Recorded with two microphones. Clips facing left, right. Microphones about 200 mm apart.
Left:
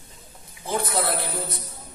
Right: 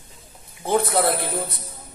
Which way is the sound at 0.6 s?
60° right (ahead or behind).